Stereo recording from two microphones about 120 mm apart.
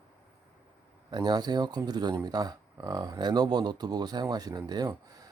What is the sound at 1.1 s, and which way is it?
Speech, 35° right (ahead or behind).